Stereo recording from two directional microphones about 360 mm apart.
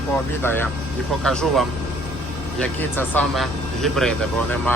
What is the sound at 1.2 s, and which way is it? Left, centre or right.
Speech, centre.